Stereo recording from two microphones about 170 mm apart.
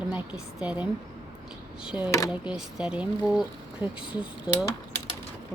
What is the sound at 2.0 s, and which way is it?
Speech, 15° left (ahead or behind).